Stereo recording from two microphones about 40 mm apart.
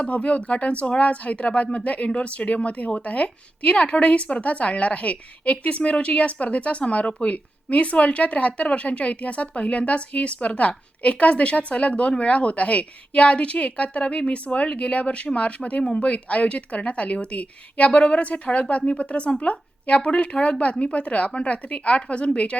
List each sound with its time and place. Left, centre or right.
0.0 s speech: left